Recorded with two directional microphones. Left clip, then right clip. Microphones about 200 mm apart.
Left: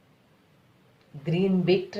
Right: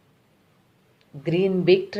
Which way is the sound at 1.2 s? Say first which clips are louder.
Right 5 dB; 40° right (ahead or behind).